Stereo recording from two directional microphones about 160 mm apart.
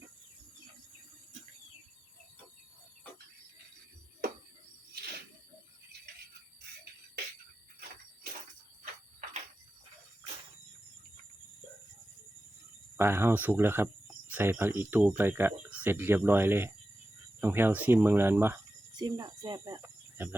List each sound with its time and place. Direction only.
13.0 s speech: 15° right (ahead or behind)
19.8 s cricket: 15° right (ahead or behind)